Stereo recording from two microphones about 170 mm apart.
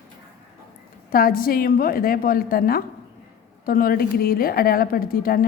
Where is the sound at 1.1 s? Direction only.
60° left (ahead or behind).